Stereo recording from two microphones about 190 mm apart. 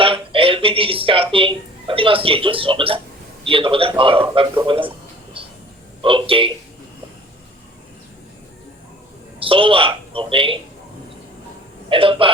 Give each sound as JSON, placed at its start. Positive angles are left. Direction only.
{"t": 0.0, "sound": "speech", "side_deg": -30}
{"t": 6.0, "sound": "speech", "side_deg": -25}
{"t": 9.4, "sound": "speech", "side_deg": -30}
{"t": 11.9, "sound": "speech", "side_deg": -30}